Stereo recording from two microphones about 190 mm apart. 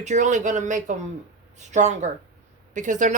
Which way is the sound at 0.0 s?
40° right (ahead or behind).